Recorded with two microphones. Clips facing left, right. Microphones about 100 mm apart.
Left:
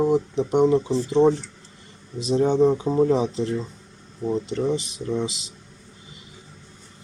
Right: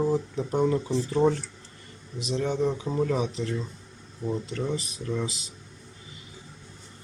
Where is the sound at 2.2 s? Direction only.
30° left (ahead or behind).